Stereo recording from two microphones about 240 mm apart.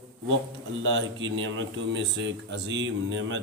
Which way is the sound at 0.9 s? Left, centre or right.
Right.